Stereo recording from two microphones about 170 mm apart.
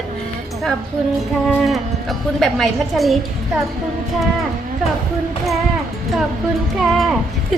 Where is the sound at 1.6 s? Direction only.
Centre (ahead or behind).